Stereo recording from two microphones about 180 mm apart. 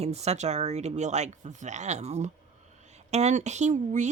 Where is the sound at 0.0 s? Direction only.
35° right (ahead or behind).